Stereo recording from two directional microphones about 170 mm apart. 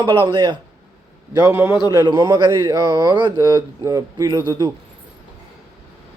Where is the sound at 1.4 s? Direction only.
15° right (ahead or behind).